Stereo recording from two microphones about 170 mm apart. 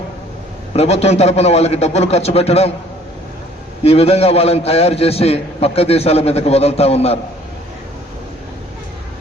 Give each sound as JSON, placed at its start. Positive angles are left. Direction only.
{"t": 0.8, "sound": "a man's voice", "side_deg": 40}
{"t": 3.8, "sound": "a man's voice", "side_deg": 35}